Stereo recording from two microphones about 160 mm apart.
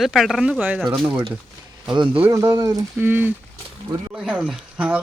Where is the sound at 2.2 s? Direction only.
20° right (ahead or behind).